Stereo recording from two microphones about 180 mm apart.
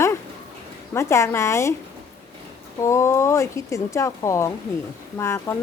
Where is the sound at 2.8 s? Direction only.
15° left (ahead or behind).